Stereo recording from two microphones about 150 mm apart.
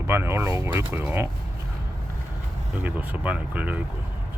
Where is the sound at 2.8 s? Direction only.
10° right (ahead or behind).